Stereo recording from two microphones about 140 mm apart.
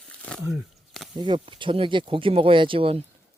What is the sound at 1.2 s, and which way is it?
Speech, 40° right (ahead or behind).